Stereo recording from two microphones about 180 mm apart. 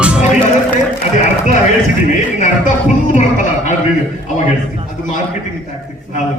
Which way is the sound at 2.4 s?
45° left (ahead or behind).